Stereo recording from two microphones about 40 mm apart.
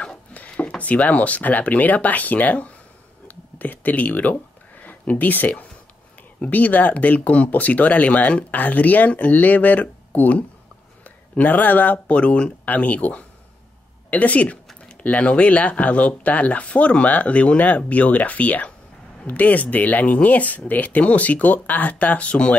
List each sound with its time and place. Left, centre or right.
0.7 s speech: left
3.3 s a sound: left
4.8 s speech: left
12.1 s speech: left